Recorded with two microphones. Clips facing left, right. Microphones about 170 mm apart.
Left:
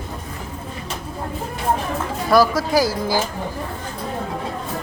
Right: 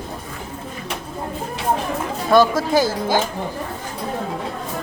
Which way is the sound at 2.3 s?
25° right (ahead or behind).